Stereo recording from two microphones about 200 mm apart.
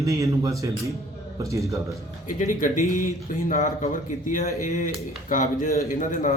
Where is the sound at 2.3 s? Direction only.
40° left (ahead or behind).